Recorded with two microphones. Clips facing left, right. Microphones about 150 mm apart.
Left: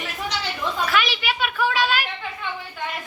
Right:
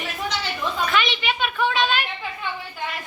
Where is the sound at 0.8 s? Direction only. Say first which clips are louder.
Right 1 dB; 5° left (ahead or behind).